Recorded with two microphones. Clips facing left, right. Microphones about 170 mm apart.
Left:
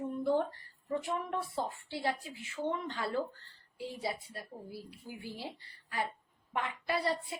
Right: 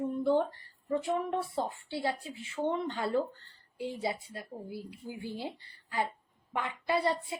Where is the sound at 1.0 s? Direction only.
25° right (ahead or behind).